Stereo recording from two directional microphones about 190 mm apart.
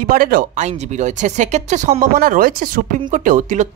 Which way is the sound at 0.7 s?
40° right (ahead or behind).